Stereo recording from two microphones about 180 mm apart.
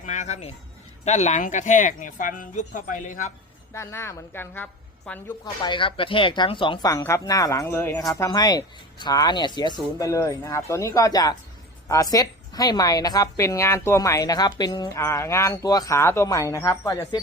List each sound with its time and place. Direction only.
0.0 s music: 45° left (ahead or behind)
1.0 s speech: 40° left (ahead or behind)
3.7 s a woman's voice: 15° left (ahead or behind)
5.6 s a woman's voice: 25° left (ahead or behind)